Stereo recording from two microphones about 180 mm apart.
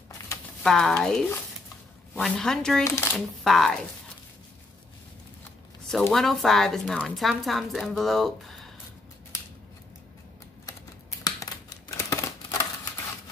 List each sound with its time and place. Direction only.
0.7 s speech: 5° left (ahead or behind)
3.4 s speech: centre (ahead or behind)
5.9 s speech: centre (ahead or behind)
11.2 s scissors: 20° left (ahead or behind)